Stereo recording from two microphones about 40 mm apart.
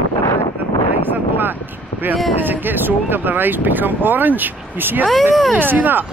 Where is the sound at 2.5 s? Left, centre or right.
Right.